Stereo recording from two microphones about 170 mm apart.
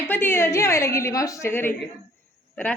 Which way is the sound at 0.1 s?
10° left (ahead or behind).